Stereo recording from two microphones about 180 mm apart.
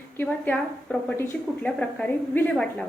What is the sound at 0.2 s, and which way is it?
A woman's voice, 10° left (ahead or behind).